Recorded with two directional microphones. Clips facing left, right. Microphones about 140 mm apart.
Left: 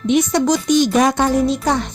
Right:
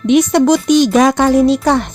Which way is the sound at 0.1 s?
65° right (ahead or behind).